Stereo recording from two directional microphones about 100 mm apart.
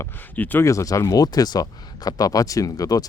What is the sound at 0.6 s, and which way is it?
Speech, 30° left (ahead or behind).